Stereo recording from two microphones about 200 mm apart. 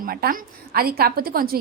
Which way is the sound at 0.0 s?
45° right (ahead or behind).